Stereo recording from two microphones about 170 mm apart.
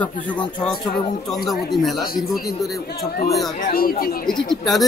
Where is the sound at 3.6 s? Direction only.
55° left (ahead or behind).